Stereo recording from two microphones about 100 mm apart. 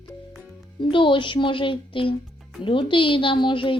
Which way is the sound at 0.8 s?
55° left (ahead or behind).